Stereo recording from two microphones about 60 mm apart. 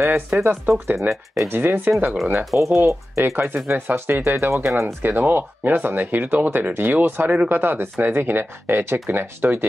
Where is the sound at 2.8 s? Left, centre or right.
Right.